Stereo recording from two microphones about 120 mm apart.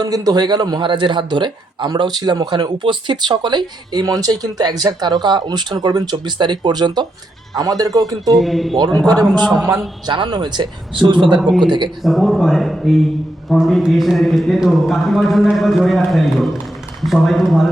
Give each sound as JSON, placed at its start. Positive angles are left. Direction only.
{"t": 0.0, "sound": "speech", "side_deg": -30}
{"t": 8.3, "sound": "speech", "side_deg": 0}
{"t": 10.1, "sound": "speech", "side_deg": -40}
{"t": 11.3, "sound": "speech", "side_deg": 0}
{"t": 11.6, "sound": "speech", "side_deg": -40}
{"t": 12.0, "sound": "speech", "side_deg": 0}